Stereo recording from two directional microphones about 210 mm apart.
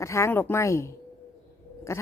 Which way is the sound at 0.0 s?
15° left (ahead or behind).